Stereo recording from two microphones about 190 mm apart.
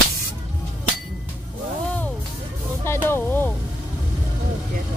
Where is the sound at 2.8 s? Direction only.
10° left (ahead or behind).